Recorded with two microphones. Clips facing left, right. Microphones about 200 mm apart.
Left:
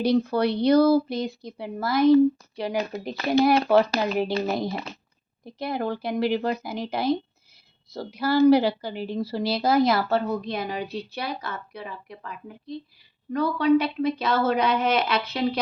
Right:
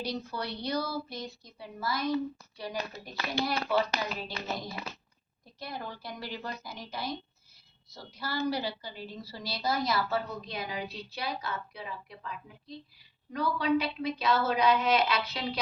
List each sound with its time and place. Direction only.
0.0 s a woman's voice: 65° left (ahead or behind)
2.6 s a woman's voice: 80° left
3.4 s a woman's voice: 70° left (ahead or behind); by 15.4 s 55° left (ahead or behind)